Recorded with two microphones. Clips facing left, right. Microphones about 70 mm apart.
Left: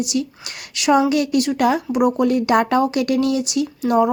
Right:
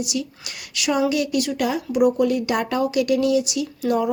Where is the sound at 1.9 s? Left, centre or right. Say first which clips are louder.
Even; left.